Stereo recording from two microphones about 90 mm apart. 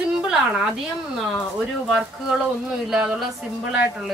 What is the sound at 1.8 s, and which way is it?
A woman's voice, 5° right (ahead or behind).